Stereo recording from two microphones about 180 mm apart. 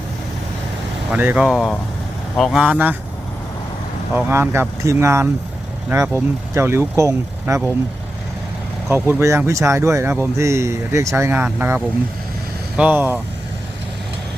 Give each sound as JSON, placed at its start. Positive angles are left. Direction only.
{"t": 1.1, "sound": "speech", "side_deg": -10}
{"t": 4.1, "sound": "speech", "side_deg": -10}
{"t": 9.0, "sound": "speech", "side_deg": -15}